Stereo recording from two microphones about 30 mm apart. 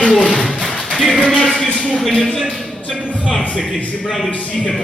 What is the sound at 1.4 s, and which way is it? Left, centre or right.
Speech, left.